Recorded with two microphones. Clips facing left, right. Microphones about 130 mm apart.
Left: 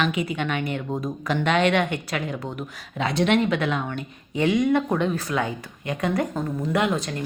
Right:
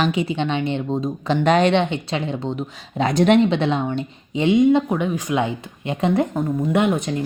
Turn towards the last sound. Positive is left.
turn(degrees=-20)  # may be behind; listen again after turning